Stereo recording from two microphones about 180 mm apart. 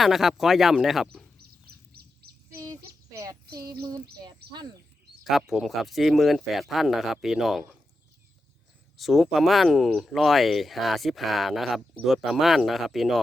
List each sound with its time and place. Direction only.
0.0 s speech: centre (ahead or behind)
1.9 s a sound: 60° right (ahead or behind)
2.5 s child singing: 20° right (ahead or behind)
3.8 s speech: 20° right (ahead or behind)
5.2 s speech: centre (ahead or behind)
9.0 s speech: centre (ahead or behind)